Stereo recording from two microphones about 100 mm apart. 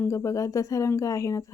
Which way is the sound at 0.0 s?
30° left (ahead or behind).